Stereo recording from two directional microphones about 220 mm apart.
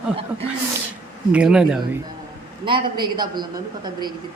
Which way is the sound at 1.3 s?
5° right (ahead or behind).